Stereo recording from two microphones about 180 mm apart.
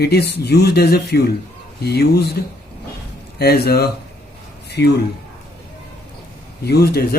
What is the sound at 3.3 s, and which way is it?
Speech, 60° left (ahead or behind).